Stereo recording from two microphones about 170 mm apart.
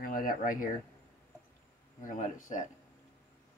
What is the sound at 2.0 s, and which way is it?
Speech, 50° left (ahead or behind).